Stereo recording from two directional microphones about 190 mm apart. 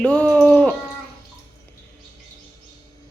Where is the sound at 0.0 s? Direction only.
5° left (ahead or behind).